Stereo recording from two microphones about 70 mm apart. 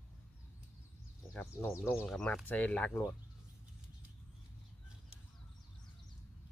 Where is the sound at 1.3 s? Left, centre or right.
Left.